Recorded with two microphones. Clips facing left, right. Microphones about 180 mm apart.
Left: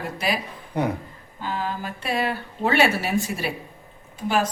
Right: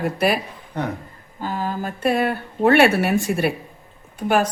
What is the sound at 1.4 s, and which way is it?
A woman's voice, 45° right (ahead or behind).